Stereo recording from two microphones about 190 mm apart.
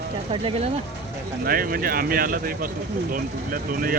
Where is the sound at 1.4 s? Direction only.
50° right (ahead or behind).